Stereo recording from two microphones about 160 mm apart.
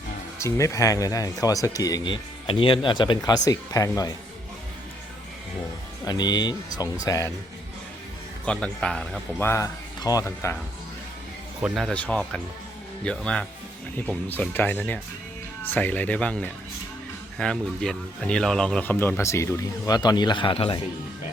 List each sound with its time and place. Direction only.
0.3 s speech: 15° left (ahead or behind)
6.1 s speech: 25° left (ahead or behind)
8.4 s speech: 5° left (ahead or behind)
9.5 s speech: 20° left (ahead or behind)
11.6 s speech: centre (ahead or behind); by 20.8 s 35° left (ahead or behind)